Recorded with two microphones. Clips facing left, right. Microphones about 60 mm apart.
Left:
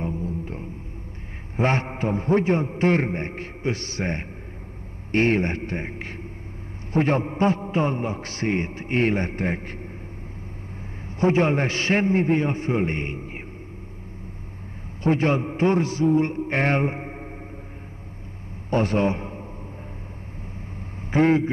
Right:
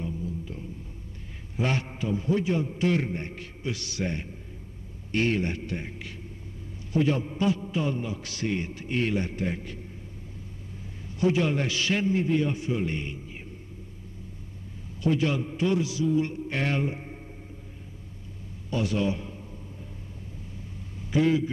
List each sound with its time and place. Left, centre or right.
0.0 s music: left
1.6 s a man's voice: left
11.1 s a man's voice: left
15.0 s a man's voice: left
18.7 s a man's voice: left
21.1 s a man's voice: left